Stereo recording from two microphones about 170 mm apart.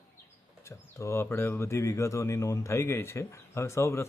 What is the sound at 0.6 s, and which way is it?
Speech, 15° left (ahead or behind).